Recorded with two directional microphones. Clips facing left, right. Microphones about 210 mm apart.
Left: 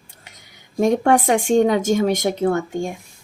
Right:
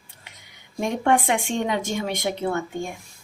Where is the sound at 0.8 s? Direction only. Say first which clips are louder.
Left 6 dB; 40° left (ahead or behind).